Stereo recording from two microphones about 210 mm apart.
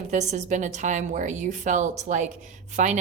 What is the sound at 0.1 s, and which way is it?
A woman's voice, 35° right (ahead or behind).